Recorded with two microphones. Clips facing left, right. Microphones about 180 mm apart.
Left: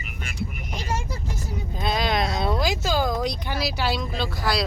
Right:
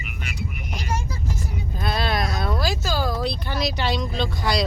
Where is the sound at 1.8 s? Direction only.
20° left (ahead or behind); by 4.7 s centre (ahead or behind).